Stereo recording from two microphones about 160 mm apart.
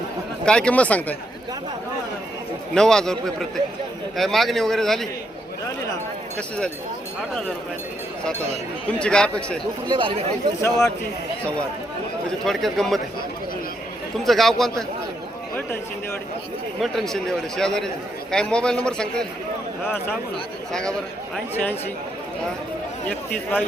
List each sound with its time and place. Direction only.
0.4 s speech: 5° left (ahead or behind)
2.7 s a man's voice: 5° left (ahead or behind)
8.9 s speech: 5° left (ahead or behind)
9.9 s speech: 30° right (ahead or behind)
10.6 s a man's voice: 20° left (ahead or behind)
12.5 s a man's voice: centre (ahead or behind)
14.3 s a man's voice: centre (ahead or behind)
16.8 s a man's voice: centre (ahead or behind)
21.3 s speech: 10° left (ahead or behind)
23.0 s speech: 10° left (ahead or behind)